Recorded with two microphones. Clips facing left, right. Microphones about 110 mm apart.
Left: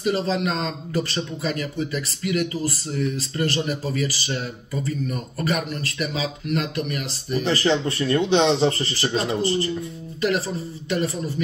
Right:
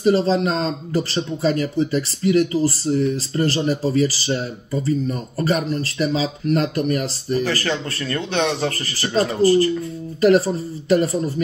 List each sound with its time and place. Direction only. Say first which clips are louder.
0.0 s speech: right 6 dB; 35° right (ahead or behind)
7.4 s speech: left 2 dB; 20° left (ahead or behind)
10.2 s speech: right 8 dB; 40° right (ahead or behind)